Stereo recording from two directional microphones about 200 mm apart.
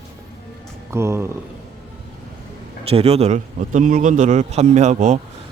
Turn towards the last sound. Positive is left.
turn(degrees=-35)  # may be behind; listen again after turning